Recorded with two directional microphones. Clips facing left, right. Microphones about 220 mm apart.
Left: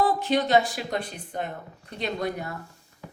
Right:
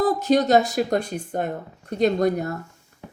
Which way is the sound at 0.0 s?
40° right (ahead or behind).